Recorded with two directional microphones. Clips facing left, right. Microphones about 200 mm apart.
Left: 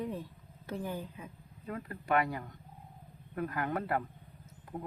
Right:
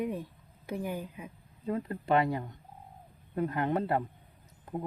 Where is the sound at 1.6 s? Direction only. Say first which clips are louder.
Right 8 dB; 25° right (ahead or behind).